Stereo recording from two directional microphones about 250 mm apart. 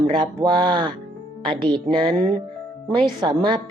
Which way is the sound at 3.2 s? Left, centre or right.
Centre.